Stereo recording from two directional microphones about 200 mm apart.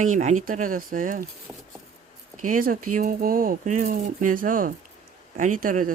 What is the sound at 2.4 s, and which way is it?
Speech, 45° right (ahead or behind).